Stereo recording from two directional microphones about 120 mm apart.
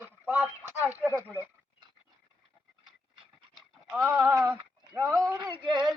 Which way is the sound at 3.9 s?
20° right (ahead or behind).